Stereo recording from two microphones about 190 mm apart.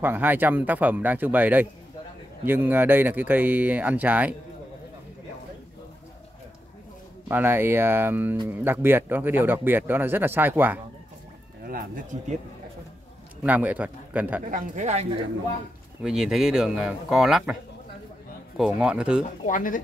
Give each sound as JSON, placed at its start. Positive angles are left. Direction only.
{"t": 0.0, "sound": "a man's voice", "side_deg": -10}
{"t": 7.2, "sound": "a man's voice", "side_deg": -10}
{"t": 11.6, "sound": "speech", "side_deg": -50}
{"t": 13.4, "sound": "a man's voice", "side_deg": -10}
{"t": 14.5, "sound": "speech", "side_deg": -35}
{"t": 16.0, "sound": "speech", "side_deg": -5}
{"t": 18.6, "sound": "speech", "side_deg": -5}
{"t": 19.4, "sound": "speech", "side_deg": 45}